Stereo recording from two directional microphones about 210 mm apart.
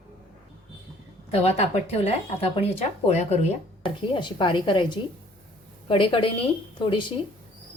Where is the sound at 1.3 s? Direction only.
30° left (ahead or behind).